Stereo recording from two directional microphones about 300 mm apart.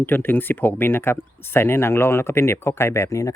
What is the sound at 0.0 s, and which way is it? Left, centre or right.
Speech, centre.